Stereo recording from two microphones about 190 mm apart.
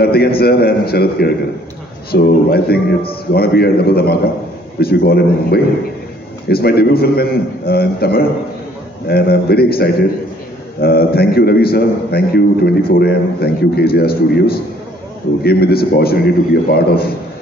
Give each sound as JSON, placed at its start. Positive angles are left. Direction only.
{"t": 0.0, "sound": "a man's voice", "side_deg": 55}